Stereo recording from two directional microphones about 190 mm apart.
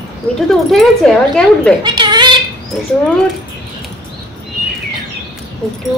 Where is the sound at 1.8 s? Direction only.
25° right (ahead or behind).